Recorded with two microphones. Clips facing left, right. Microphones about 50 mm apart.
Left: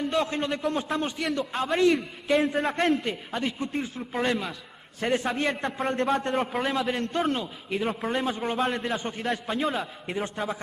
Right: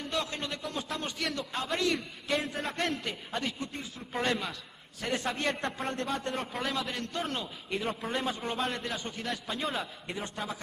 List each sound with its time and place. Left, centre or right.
0.3 s a man's voice: left
0.9 s a man's voice: centre
4.1 s a man's voice: centre
5.0 s a man's voice: centre
6.6 s a man's voice: centre
8.7 s a man's voice: left
9.6 s a man's voice: centre
10.0 s a man's voice: centre